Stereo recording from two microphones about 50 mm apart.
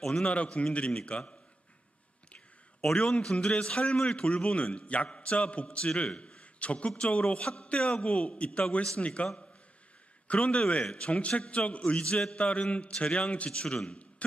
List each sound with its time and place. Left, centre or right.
0.0 s a man's voice: centre
0.3 s a man's voice: left
2.8 s a man's voice: centre